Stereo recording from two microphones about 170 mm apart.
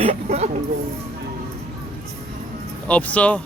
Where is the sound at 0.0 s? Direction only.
40° right (ahead or behind).